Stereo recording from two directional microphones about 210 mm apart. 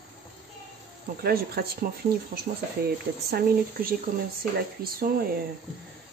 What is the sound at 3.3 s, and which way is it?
Speech, 45° right (ahead or behind).